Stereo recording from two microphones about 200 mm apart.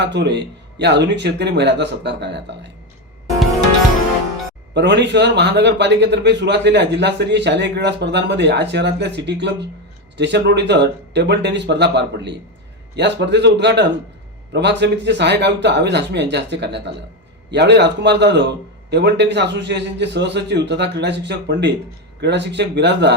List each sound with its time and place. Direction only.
0.0 s a man's voice: 60° right (ahead or behind)
4.7 s a man's voice: 60° right (ahead or behind)